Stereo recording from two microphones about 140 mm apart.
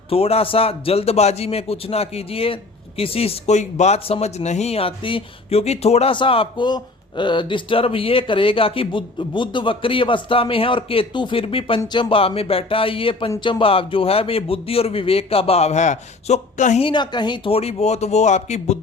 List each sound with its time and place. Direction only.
0.1 s a man's voice: 45° left (ahead or behind)
16.8 s a man's voice: 35° left (ahead or behind); by 18.8 s 55° left (ahead or behind)